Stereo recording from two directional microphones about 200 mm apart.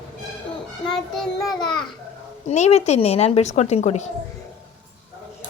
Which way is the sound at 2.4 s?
35° left (ahead or behind).